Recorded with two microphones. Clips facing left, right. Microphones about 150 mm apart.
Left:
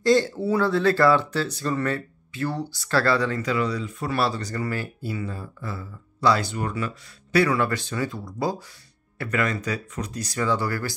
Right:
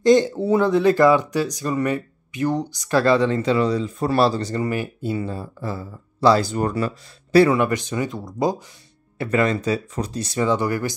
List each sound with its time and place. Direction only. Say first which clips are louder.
0.0 s speech: right 4 dB; 20° right (ahead or behind); by 6.9 s 35° right (ahead or behind)
7.3 s speech: right 6 dB; 20° right (ahead or behind)